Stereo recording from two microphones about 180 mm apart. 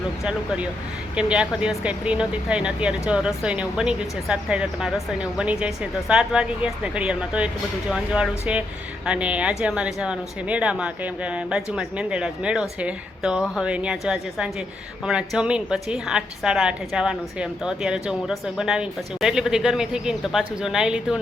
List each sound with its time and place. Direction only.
0.3 s a woman's voice: 5° right (ahead or behind)